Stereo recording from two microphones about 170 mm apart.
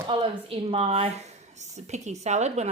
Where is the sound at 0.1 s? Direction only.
30° right (ahead or behind).